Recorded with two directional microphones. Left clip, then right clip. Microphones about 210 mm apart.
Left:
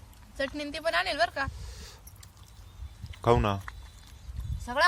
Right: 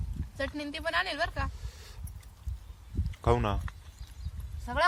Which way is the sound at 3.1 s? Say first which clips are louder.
Left 4 dB; 5° left (ahead or behind).